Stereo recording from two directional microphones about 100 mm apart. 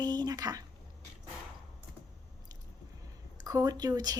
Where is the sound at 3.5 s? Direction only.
40° right (ahead or behind).